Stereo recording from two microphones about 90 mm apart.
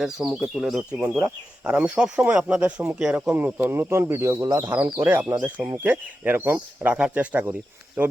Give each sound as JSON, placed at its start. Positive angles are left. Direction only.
{"t": 0.3, "sound": "speech", "side_deg": -5}
{"t": 6.9, "sound": "speech", "side_deg": -15}